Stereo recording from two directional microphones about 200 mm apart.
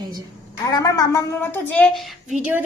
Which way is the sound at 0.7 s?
15° left (ahead or behind).